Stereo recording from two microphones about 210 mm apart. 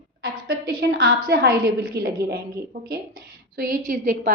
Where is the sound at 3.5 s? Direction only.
40° right (ahead or behind).